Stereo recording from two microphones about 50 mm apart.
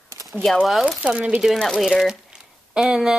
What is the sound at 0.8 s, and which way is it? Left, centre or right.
Speech, right.